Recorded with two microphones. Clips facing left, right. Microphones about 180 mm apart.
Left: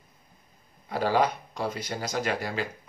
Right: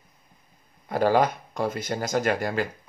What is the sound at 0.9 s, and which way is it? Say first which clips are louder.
Speech: right 4 dB; 50° right (ahead or behind).